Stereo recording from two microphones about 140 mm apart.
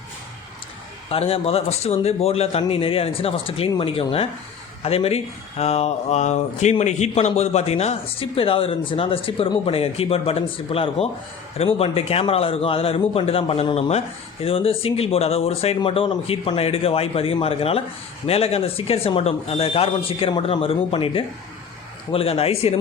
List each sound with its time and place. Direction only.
1.1 s speech: 45° left (ahead or behind)